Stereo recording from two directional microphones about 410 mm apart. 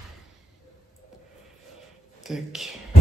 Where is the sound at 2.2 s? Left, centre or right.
Centre.